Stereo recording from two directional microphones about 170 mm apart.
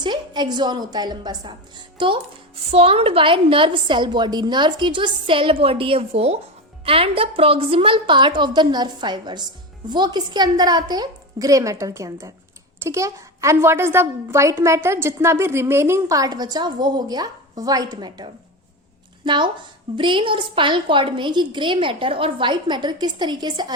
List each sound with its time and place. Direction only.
0.0 s a woman's voice: 25° right (ahead or behind)